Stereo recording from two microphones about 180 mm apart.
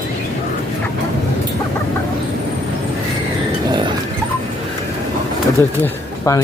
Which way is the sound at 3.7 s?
25° right (ahead or behind).